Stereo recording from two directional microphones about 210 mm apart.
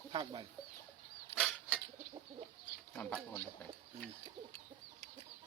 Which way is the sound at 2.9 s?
5° left (ahead or behind).